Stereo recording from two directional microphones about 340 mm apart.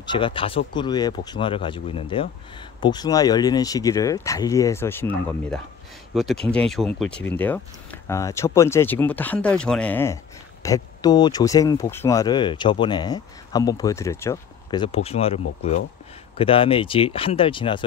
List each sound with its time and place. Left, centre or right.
0.0 s speech: centre